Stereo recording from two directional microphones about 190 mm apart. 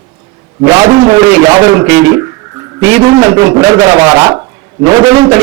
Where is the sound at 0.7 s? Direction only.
20° right (ahead or behind).